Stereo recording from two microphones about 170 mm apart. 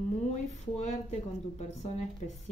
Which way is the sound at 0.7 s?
40° left (ahead or behind).